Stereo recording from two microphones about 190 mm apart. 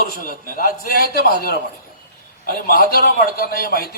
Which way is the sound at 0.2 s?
45° left (ahead or behind).